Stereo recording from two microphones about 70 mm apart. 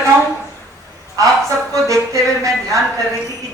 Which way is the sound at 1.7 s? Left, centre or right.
Right.